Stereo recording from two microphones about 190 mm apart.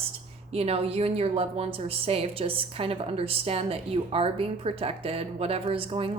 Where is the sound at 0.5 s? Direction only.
30° right (ahead or behind).